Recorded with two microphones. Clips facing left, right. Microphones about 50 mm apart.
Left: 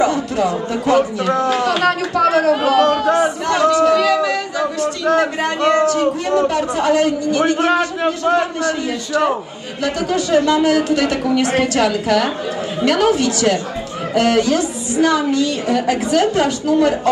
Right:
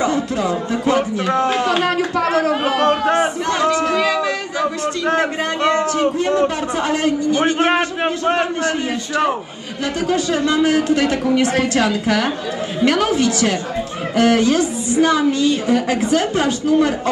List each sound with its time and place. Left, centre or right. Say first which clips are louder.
0.0 s chatter: left 2 dB; right
0.8 s a man's voice: left 3 dB; right